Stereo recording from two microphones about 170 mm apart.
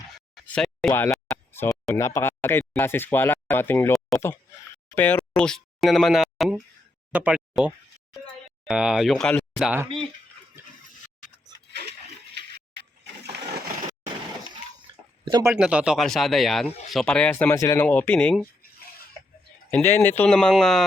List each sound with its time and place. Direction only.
0.3 s a sound: 5° left (ahead or behind)
0.9 s speech: 15° left (ahead or behind)
4.9 s speech: 10° left (ahead or behind)
9.6 s speech: 10° right (ahead or behind)
12.3 s a sound: 80° right
15.2 s speech: 25° right (ahead or behind)
15.5 s speech: 5° right (ahead or behind)
19.7 s speech: 10° left (ahead or behind)